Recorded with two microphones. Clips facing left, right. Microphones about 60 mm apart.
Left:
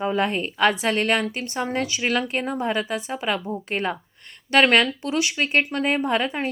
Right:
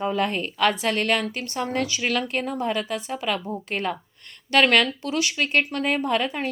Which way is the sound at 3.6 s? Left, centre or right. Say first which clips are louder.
Left 1 dB; left.